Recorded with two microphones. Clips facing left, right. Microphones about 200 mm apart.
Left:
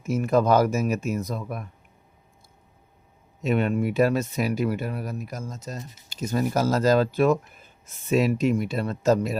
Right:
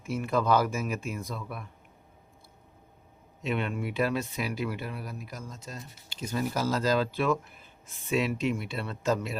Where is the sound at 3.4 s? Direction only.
45° left (ahead or behind).